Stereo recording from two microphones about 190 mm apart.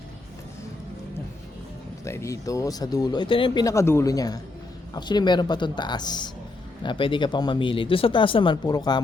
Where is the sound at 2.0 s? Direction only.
15° left (ahead or behind).